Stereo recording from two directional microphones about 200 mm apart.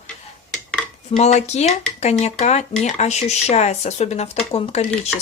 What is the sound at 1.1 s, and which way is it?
Speech, 35° left (ahead or behind).